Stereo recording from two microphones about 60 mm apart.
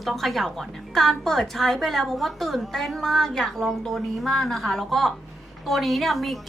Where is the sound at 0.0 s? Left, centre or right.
Centre.